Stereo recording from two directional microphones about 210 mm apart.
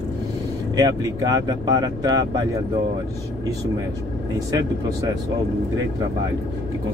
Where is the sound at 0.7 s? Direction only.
20° right (ahead or behind).